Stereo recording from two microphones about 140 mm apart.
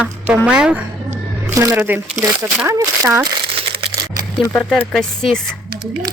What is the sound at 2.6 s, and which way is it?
Speech, 20° right (ahead or behind).